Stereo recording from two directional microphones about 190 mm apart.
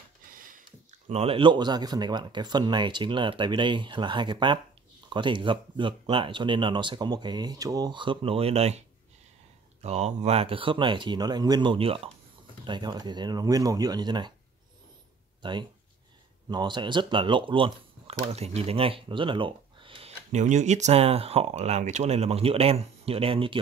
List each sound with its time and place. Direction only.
0.3 s a sound: 45° right (ahead or behind)
1.0 s speech: 30° right (ahead or behind)
15.4 s speech: 25° right (ahead or behind)